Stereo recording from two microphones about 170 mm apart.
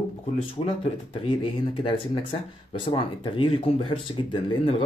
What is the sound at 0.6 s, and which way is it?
Speech, 30° left (ahead or behind).